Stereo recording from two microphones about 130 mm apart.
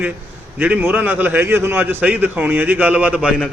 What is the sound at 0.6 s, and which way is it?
A man's voice, 15° right (ahead or behind).